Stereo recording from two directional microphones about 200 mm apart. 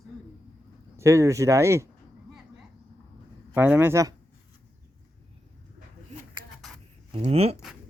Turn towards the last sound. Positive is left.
turn(degrees=-30)  # may be behind; listen again after turning